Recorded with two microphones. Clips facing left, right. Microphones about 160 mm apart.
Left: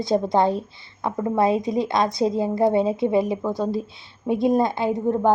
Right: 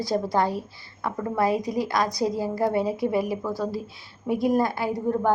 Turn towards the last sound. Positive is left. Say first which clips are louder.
# left 4 dB
turn(degrees=20)  # may be behind; listen again after turning